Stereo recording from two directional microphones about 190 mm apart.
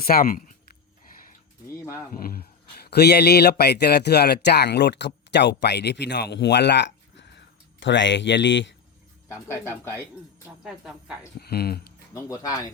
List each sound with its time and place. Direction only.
0.0 s speech: 50° left (ahead or behind)
1.6 s speech: 15° left (ahead or behind)
2.1 s a man's voice: 50° left (ahead or behind); by 8.7 s 70° left (ahead or behind)
9.5 s speech: 15° left (ahead or behind)
10.4 s speech: 5° right (ahead or behind)
11.3 s speech: 55° left (ahead or behind)
12.1 s speech: 15° left (ahead or behind)